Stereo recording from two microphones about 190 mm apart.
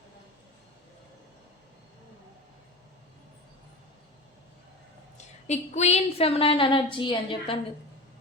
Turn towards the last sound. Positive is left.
turn(degrees=25)  # may be behind; listen again after turning